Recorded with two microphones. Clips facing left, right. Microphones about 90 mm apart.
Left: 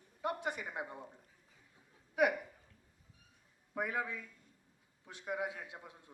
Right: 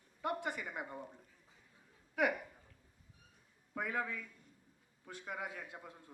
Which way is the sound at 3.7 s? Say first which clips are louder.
Left 1 dB; 20° left (ahead or behind).